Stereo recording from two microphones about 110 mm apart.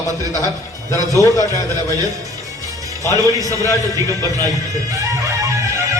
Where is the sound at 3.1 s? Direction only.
30° right (ahead or behind).